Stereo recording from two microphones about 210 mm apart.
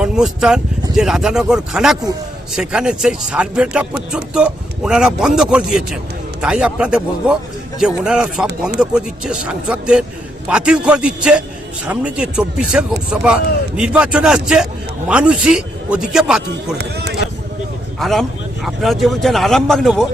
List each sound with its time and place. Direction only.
0.0 s speech: 5° right (ahead or behind)
16.7 s speech: 50° right (ahead or behind)
18.0 s speech: centre (ahead or behind)